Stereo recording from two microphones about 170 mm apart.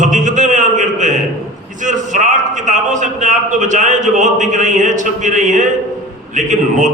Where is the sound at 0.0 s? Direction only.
45° right (ahead or behind).